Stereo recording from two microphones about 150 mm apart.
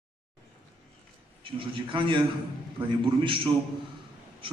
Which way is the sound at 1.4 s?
35° right (ahead or behind).